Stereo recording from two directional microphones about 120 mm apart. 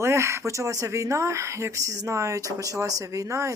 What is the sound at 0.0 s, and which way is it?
Speech, 20° right (ahead or behind).